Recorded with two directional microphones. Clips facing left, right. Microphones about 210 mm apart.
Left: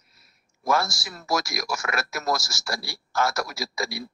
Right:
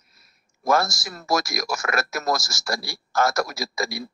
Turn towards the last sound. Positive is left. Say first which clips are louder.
# right 2 dB
turn(degrees=-45)  # may be behind; listen again after turning